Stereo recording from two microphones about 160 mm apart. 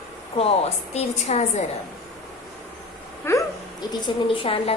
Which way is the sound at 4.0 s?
35° left (ahead or behind).